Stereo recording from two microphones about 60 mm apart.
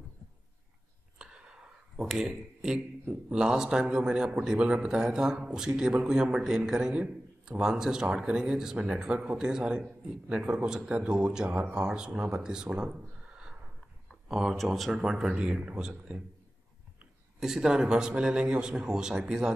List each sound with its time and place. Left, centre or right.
1.1 s a sound: centre
2.0 s a man's voice: centre
17.4 s a man's voice: centre